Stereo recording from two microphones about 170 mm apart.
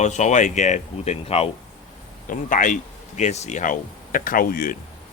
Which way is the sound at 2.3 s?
50° left (ahead or behind).